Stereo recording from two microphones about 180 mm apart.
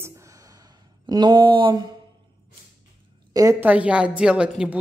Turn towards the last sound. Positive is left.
turn(degrees=-5)  # may be behind; listen again after turning